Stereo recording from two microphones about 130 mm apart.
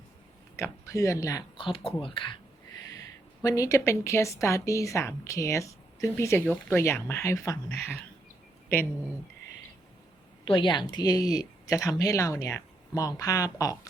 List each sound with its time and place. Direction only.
0.5 s speech: 25° left (ahead or behind)
1.5 s a woman's voice: 45° left (ahead or behind)
3.4 s speech: 25° left (ahead or behind)
10.4 s a woman's voice: 40° left (ahead or behind)